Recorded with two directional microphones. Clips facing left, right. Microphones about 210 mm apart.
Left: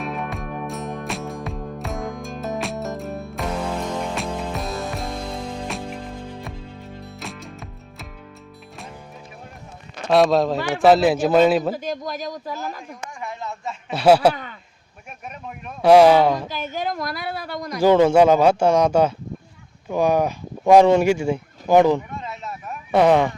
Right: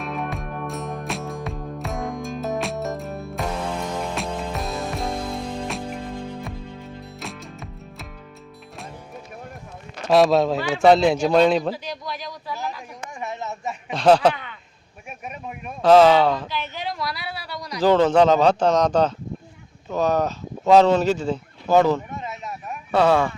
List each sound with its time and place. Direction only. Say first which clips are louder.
0.0 s music: left 1 dB; centre (ahead or behind)
7.0 s music: even; centre (ahead or behind)
10.1 s a man's voice: even; centre (ahead or behind)
11.7 s a woman's voice: left 4 dB; 50° left (ahead or behind)
13.1 s speech: right 3 dB; 20° right (ahead or behind)
13.9 s speech: left 1 dB; 10° left (ahead or behind)
15.8 s speech: left 2 dB; 10° left (ahead or behind)
16.5 s a woman's voice: left 3 dB; 45° left (ahead or behind)
17.8 s speech: left 2 dB; 10° left (ahead or behind)
22.1 s a sound: even; 20° right (ahead or behind)
22.9 s speech: left 2 dB; 15° left (ahead or behind)